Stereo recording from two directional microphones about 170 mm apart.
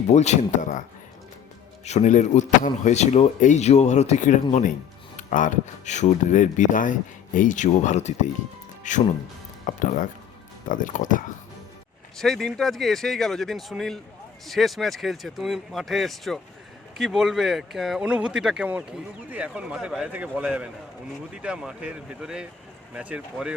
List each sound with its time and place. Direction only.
0.1 s speech: 40° left (ahead or behind)
1.8 s a man's voice: 40° left (ahead or behind)
12.1 s a man's voice: centre (ahead or behind)